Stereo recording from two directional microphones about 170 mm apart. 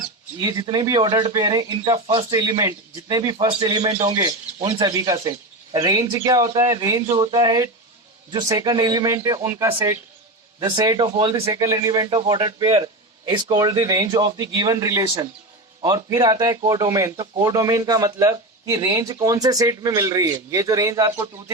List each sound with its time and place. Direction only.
0.3 s speech: 25° right (ahead or behind)